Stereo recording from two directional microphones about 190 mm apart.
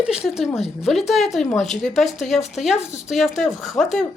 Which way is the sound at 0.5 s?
30° left (ahead or behind).